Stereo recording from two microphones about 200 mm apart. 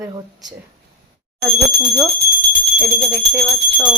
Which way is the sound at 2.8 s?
Centre (ahead or behind).